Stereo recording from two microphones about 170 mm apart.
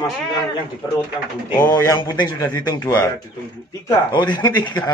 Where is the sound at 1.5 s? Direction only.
25° left (ahead or behind).